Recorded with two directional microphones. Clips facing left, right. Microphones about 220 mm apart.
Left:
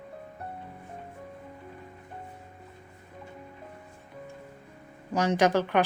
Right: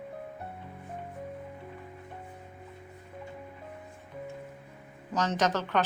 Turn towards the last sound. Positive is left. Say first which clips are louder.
# left 5 dB
turn(degrees=10)  # may be behind; listen again after turning